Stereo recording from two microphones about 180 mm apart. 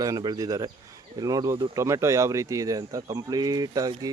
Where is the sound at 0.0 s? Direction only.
20° right (ahead or behind).